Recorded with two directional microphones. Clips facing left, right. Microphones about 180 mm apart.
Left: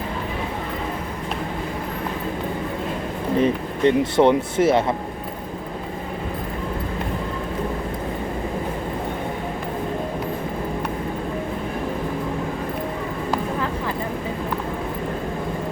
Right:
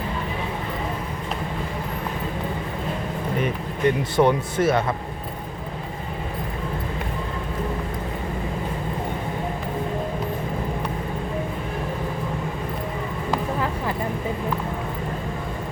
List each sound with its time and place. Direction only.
3.3 s speech: 30° left (ahead or behind)